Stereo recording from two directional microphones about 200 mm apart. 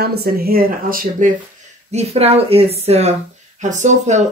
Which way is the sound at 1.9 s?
30° right (ahead or behind).